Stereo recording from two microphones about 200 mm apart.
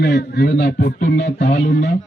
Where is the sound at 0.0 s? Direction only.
55° left (ahead or behind).